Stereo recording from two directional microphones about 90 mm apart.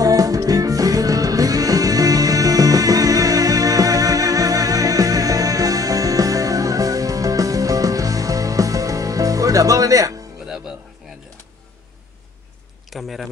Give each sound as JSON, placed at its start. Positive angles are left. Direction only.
{"t": 0.0, "sound": "music", "side_deg": -40}
{"t": 10.4, "sound": "music", "side_deg": -5}
{"t": 12.9, "sound": "speech", "side_deg": 0}